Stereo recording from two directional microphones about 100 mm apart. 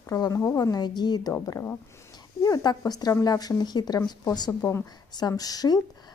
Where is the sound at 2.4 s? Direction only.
40° left (ahead or behind).